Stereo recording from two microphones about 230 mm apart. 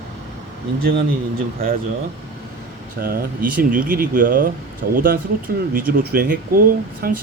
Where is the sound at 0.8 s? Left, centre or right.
Right.